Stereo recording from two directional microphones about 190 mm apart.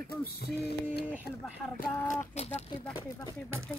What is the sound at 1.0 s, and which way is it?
Speech, 10° right (ahead or behind).